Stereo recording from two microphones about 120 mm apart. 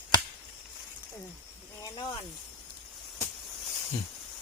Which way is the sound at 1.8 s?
40° left (ahead or behind).